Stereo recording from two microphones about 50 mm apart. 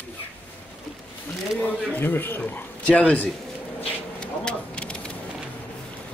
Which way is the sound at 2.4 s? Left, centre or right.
Left.